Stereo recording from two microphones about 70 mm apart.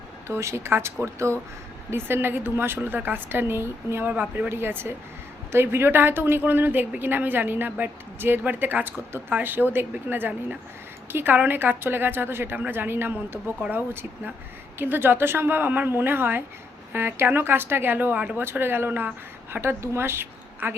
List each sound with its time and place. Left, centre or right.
0.3 s a woman's voice: right